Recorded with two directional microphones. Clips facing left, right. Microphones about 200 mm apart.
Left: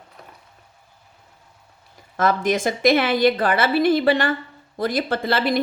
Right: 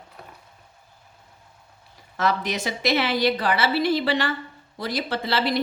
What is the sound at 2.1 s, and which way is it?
Speech, 50° left (ahead or behind).